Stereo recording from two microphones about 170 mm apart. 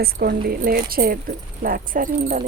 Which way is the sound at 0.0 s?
65° right (ahead or behind).